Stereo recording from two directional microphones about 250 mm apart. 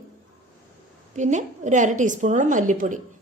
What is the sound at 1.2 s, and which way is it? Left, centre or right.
A woman's voice, right.